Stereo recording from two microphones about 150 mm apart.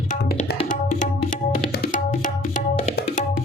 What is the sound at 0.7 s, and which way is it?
Tabla, 60° left (ahead or behind).